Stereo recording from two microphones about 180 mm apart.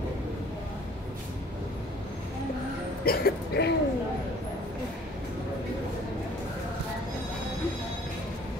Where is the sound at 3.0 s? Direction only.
60° left (ahead or behind).